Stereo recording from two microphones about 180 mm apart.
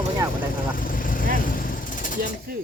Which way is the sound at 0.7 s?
50° left (ahead or behind).